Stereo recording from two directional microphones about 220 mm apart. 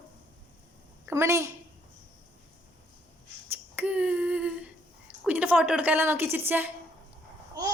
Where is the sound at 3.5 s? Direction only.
5° right (ahead or behind).